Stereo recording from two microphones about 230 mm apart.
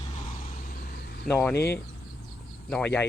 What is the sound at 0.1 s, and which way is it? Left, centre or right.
Vehicle, left.